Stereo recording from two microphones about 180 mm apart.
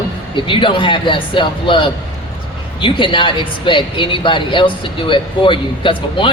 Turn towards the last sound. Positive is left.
turn(degrees=25)  # may be behind; listen again after turning